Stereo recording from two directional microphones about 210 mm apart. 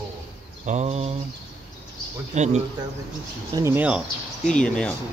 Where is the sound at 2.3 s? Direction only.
35° right (ahead or behind).